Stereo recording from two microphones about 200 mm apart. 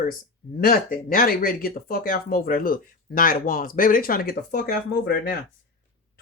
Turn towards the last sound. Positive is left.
turn(degrees=50)  # may be behind; listen again after turning